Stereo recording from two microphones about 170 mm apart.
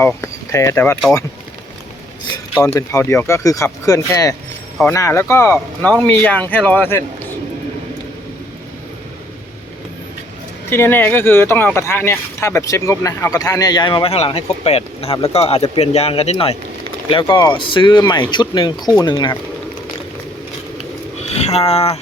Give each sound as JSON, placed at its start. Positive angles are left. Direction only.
{"t": 0.2, "sound": "speech", "side_deg": 15}
{"t": 2.7, "sound": "speech", "side_deg": 15}
{"t": 10.7, "sound": "speech", "side_deg": 15}
{"t": 21.2, "sound": "speech", "side_deg": 40}